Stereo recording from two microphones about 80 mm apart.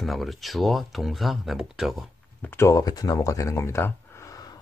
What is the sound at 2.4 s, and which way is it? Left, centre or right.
Speech, left.